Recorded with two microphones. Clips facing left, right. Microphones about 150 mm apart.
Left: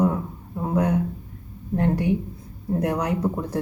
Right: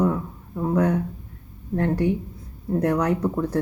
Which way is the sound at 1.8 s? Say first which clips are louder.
Even; 15° left (ahead or behind).